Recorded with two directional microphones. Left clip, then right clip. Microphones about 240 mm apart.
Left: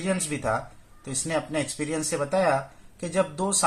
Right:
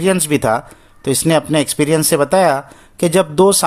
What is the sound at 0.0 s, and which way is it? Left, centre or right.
Speech, right.